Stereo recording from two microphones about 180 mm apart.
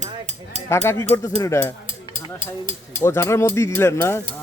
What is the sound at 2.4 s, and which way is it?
Speech, 25° right (ahead or behind).